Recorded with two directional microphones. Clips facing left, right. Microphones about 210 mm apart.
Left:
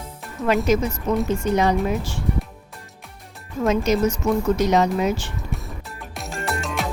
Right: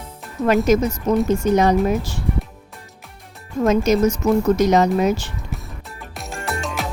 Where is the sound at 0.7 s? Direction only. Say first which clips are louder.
Right 3 dB; 45° right (ahead or behind).